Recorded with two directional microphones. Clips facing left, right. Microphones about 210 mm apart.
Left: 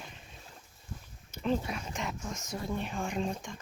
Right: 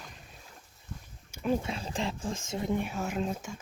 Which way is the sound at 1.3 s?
10° right (ahead or behind).